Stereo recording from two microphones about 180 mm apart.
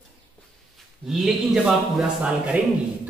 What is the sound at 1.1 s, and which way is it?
A man's voice, centre (ahead or behind).